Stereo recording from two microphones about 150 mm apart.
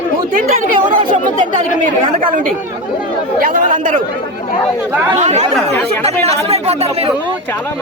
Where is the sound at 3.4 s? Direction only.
65° right (ahead or behind).